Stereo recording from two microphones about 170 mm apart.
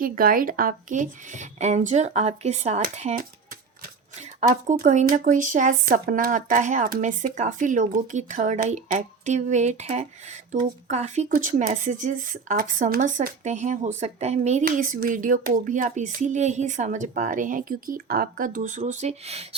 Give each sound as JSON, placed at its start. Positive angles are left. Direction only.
{"t": 0.0, "sound": "speech", "side_deg": -55}